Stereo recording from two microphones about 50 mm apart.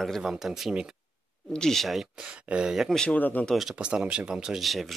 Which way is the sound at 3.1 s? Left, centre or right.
Left.